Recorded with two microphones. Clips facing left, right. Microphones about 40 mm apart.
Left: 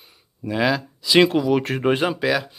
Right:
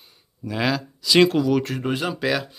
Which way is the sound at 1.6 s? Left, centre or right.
Left.